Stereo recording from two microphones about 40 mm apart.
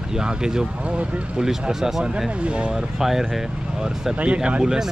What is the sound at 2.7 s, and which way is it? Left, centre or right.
Speech, centre.